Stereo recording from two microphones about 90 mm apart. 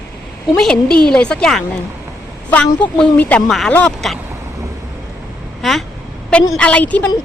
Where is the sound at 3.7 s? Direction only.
15° left (ahead or behind).